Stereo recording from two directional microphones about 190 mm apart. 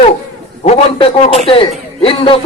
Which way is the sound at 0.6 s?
35° left (ahead or behind).